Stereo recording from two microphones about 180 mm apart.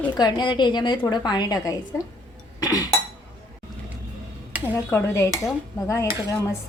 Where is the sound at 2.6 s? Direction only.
20° left (ahead or behind).